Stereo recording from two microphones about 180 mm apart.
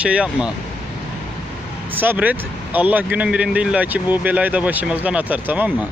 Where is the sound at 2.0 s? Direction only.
10° right (ahead or behind).